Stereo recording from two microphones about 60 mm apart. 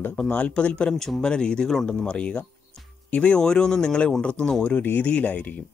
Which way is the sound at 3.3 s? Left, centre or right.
Centre.